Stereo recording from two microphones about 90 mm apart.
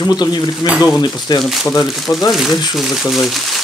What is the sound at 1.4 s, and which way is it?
Speech, centre (ahead or behind).